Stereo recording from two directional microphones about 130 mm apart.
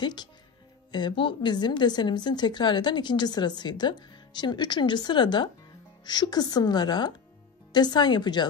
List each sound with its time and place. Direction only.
0.0 s a woman's voice: 35° left (ahead or behind)